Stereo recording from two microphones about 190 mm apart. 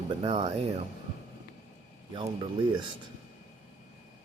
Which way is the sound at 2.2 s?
25° right (ahead or behind).